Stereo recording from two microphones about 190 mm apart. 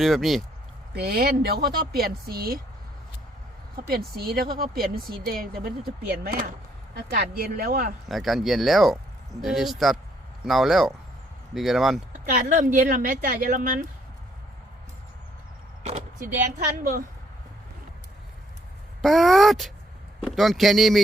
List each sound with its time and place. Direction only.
0.0 s speech: centre (ahead or behind)
0.9 s speech: 55° right (ahead or behind)
3.8 s speech: 50° right (ahead or behind)
6.9 s speech: 50° right (ahead or behind)
8.0 s speech: centre (ahead or behind)
12.3 s speech: 45° right (ahead or behind)
15.8 s speech: 40° right (ahead or behind)
19.0 s speech: centre (ahead or behind)